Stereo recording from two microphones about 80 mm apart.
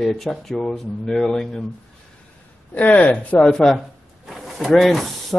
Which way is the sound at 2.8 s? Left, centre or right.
Centre.